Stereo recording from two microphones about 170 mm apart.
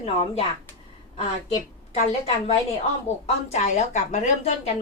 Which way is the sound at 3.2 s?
40° left (ahead or behind).